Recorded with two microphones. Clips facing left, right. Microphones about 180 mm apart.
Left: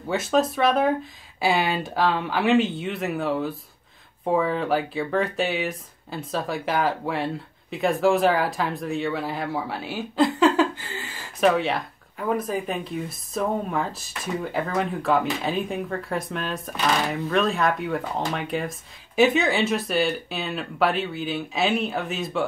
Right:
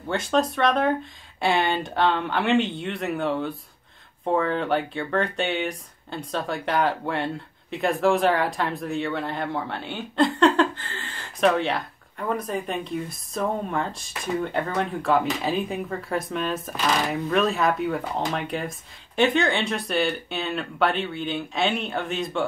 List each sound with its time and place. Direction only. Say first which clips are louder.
0.1 s speech: left 1 dB; 5° left (ahead or behind)